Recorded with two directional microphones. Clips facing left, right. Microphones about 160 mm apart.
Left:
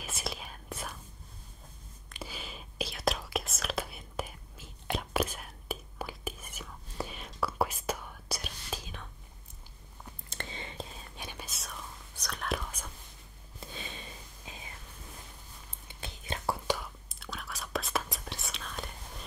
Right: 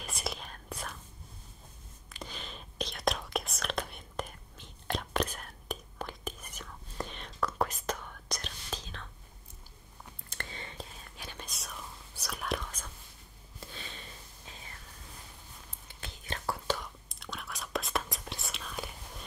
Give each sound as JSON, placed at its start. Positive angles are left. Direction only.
{"t": 0.0, "sound": "whispering", "side_deg": 0}
{"t": 2.1, "sound": "whispering", "side_deg": 5}
{"t": 10.3, "sound": "a sound", "side_deg": 20}
{"t": 11.1, "sound": "whispering", "side_deg": 15}
{"t": 11.4, "sound": "whispering", "side_deg": 0}
{"t": 13.6, "sound": "whispering", "side_deg": 15}
{"t": 15.9, "sound": "whispering", "side_deg": 20}